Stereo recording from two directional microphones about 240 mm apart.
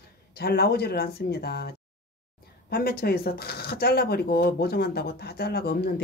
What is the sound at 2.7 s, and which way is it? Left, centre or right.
Speech, left.